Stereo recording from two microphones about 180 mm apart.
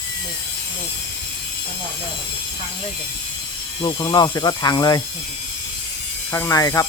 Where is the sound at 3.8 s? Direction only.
25° left (ahead or behind).